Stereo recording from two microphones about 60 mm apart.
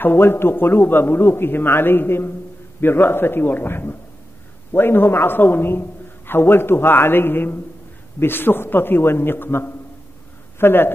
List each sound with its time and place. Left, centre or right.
0.0 s a man's voice: left